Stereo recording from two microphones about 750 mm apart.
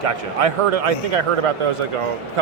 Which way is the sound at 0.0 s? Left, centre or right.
Right.